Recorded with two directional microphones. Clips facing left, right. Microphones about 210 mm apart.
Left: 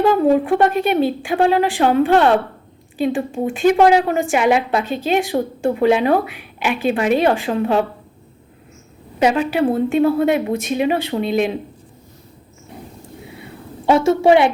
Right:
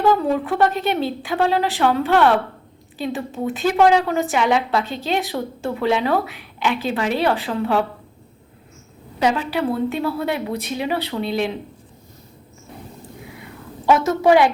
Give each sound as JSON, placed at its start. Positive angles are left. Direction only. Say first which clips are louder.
{"t": 0.0, "sound": "a woman's voice", "louder": "left 4 dB", "side_deg": 20}
{"t": 9.1, "sound": "a woman's voice", "louder": "left 4 dB", "side_deg": 20}
{"t": 13.2, "sound": "a sound", "louder": "left 2 dB", "side_deg": 25}